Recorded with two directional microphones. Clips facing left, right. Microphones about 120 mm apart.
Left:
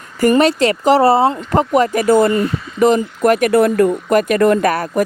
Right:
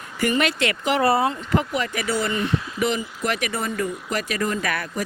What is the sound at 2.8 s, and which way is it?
Speech, 45° left (ahead or behind).